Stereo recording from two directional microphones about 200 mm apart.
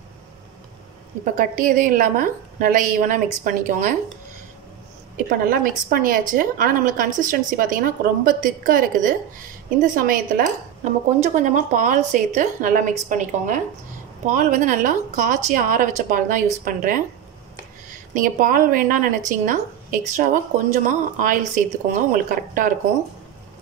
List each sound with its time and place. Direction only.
1.2 s a woman's voice: 40° right (ahead or behind)
5.1 s a woman's voice: 45° right (ahead or behind)
18.1 s a woman's voice: 40° right (ahead or behind)